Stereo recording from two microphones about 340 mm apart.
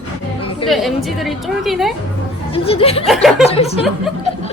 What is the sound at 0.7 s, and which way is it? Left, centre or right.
A woman's voice, centre.